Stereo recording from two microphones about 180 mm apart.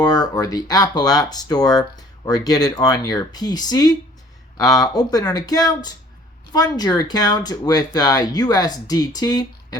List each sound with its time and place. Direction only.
0.0 s speech: 20° left (ahead or behind)